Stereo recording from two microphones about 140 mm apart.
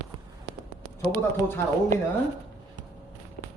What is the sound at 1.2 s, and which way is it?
Speech, 15° left (ahead or behind).